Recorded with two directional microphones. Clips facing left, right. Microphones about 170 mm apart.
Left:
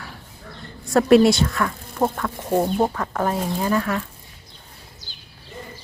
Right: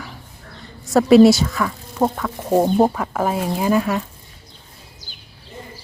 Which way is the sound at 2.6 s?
30° right (ahead or behind).